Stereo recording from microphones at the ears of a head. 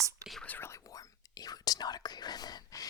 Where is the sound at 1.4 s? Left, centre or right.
Left.